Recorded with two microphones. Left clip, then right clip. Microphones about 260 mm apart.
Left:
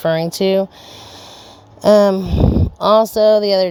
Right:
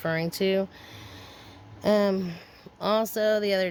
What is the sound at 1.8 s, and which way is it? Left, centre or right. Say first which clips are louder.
Speech: left 13 dB; left.